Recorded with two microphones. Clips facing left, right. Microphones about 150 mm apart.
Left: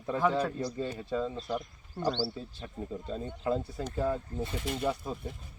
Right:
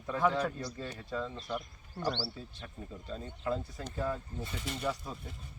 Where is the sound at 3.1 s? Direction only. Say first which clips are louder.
Left 3 dB; 35° left (ahead or behind).